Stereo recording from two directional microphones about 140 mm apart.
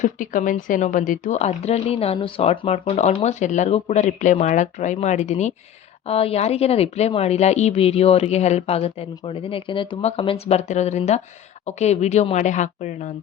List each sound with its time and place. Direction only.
0.0 s speech: 70° left (ahead or behind)
6.1 s speech: 45° left (ahead or behind); by 13.1 s 60° left (ahead or behind)